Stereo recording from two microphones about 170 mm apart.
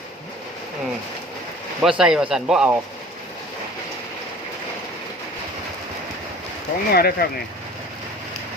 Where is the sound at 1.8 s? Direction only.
5° right (ahead or behind).